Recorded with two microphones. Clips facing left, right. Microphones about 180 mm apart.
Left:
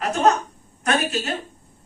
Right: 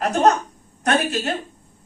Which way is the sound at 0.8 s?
40° right (ahead or behind).